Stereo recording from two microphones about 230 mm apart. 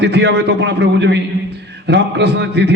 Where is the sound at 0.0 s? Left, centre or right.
Right.